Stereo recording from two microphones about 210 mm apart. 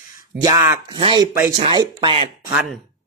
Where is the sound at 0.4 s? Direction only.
15° right (ahead or behind).